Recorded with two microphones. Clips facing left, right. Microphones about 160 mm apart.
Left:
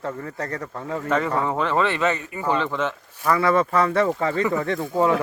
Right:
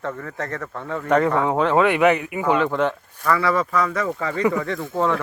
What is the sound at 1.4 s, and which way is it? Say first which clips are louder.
Speech: right 4 dB; 10° right (ahead or behind).